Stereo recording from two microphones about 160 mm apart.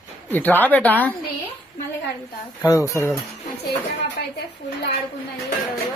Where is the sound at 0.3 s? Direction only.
10° left (ahead or behind).